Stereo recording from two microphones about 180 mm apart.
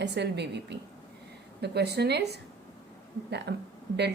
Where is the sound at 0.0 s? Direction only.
70° right (ahead or behind).